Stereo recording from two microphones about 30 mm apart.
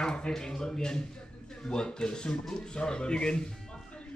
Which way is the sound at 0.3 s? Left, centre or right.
Centre.